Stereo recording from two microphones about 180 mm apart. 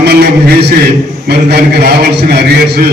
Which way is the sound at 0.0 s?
65° right (ahead or behind).